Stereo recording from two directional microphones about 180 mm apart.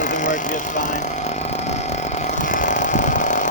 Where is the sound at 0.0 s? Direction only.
45° left (ahead or behind).